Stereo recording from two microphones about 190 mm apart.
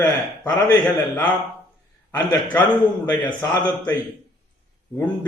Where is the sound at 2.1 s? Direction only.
20° left (ahead or behind).